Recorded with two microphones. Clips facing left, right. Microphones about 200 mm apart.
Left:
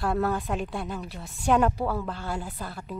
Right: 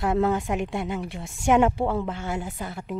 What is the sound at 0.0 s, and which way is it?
A woman's voice, 20° right (ahead or behind).